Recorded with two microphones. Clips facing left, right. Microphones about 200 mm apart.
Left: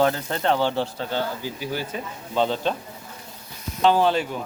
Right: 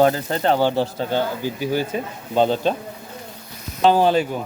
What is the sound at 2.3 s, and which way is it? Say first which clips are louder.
Speech: right 5 dB; 45° right (ahead or behind).